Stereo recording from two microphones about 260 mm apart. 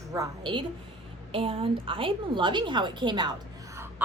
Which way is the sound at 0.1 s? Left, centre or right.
Centre.